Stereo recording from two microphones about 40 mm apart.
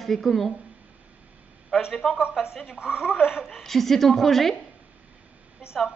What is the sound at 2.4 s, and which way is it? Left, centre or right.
A woman's voice, centre.